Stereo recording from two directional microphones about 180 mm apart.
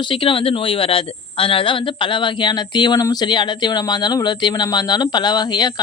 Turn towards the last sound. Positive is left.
turn(degrees=25)  # may be behind; listen again after turning